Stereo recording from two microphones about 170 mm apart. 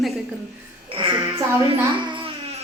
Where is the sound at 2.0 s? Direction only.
30° right (ahead or behind).